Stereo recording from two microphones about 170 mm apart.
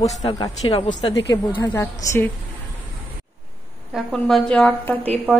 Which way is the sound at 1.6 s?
15° left (ahead or behind).